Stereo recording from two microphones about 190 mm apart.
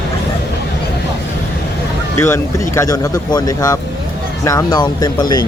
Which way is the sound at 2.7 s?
15° left (ahead or behind).